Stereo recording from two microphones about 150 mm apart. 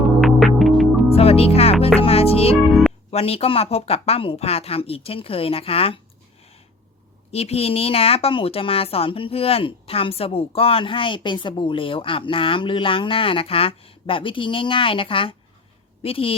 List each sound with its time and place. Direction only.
0.2 s music: centre (ahead or behind)
1.1 s music: 40° left (ahead or behind)
2.0 s a woman's voice: 40° left (ahead or behind)
7.3 s a woman's voice: 45° left (ahead or behind)